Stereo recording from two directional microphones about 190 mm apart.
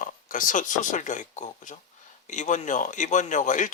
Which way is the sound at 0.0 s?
45° left (ahead or behind).